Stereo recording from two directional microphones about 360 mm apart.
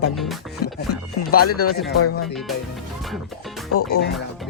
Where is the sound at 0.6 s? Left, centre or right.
Left.